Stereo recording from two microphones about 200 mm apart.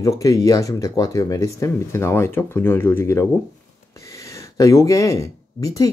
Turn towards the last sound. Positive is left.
turn(degrees=15)  # may be behind; listen again after turning